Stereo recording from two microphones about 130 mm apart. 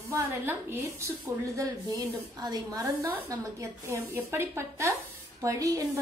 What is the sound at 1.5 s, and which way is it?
A woman's voice, 30° right (ahead or behind).